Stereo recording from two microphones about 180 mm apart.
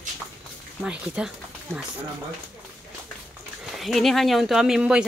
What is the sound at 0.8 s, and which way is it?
Speech, 5° right (ahead or behind).